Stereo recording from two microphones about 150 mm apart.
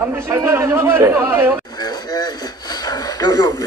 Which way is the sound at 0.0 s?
15° right (ahead or behind).